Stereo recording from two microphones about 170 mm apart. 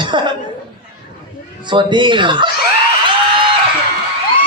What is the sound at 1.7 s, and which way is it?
Speech, 25° right (ahead or behind).